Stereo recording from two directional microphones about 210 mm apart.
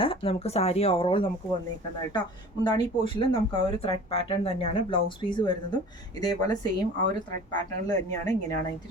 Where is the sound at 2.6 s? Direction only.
20° left (ahead or behind).